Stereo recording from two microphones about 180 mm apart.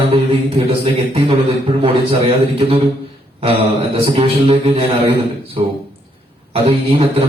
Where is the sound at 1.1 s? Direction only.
30° right (ahead or behind).